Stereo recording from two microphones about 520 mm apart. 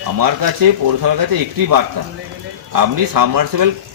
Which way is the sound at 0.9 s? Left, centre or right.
Right.